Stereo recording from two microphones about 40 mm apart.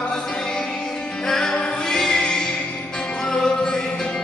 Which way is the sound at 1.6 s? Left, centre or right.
Left.